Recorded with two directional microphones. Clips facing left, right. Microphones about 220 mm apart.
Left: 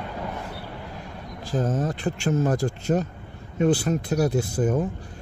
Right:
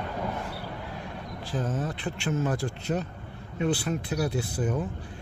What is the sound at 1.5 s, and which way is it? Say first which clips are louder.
Speech: left 6 dB; 40° left (ahead or behind).